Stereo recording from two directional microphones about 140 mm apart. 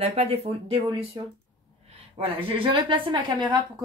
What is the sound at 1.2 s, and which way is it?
Speech, 30° right (ahead or behind).